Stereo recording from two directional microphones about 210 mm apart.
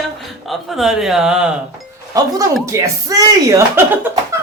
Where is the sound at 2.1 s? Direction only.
15° right (ahead or behind).